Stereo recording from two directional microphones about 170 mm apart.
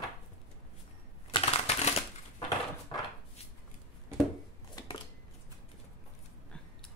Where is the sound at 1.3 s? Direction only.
40° left (ahead or behind).